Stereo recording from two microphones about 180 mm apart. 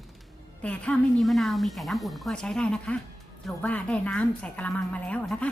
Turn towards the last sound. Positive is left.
turn(degrees=5)  # may be behind; listen again after turning